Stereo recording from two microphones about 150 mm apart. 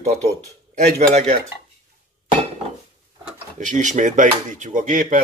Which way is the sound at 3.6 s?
55° right (ahead or behind).